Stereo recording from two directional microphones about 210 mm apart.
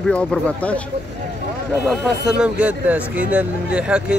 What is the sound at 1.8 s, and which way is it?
Speech, centre (ahead or behind).